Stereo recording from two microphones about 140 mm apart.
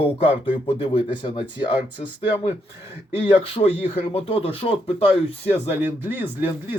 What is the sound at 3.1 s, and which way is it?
Speech, 40° left (ahead or behind).